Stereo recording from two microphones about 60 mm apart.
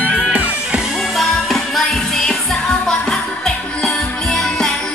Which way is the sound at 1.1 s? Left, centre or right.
Centre.